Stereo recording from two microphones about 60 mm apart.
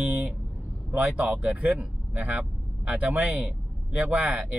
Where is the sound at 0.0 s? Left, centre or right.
Right.